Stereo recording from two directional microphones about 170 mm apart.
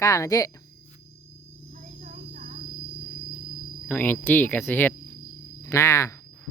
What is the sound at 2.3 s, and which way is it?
Cricket, 50° right (ahead or behind).